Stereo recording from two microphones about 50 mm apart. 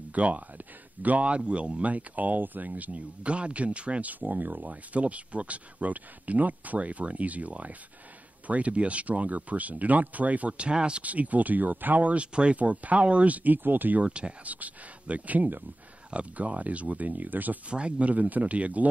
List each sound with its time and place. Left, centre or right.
0.1 s speech: right
10.7 s speech: centre; by 14.0 s right
14.0 s speech: right
17.6 s speech: right